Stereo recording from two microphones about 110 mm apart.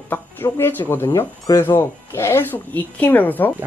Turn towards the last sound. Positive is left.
turn(degrees=15)  # may be behind; listen again after turning